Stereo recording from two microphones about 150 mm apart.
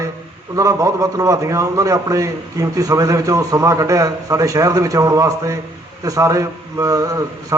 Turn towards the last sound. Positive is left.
turn(degrees=-25)  # may be behind; listen again after turning